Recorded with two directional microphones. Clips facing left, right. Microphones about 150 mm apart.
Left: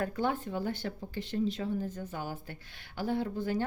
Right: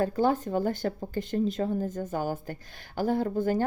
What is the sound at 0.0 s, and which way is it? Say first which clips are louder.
Speech: right 7 dB; 35° right (ahead or behind).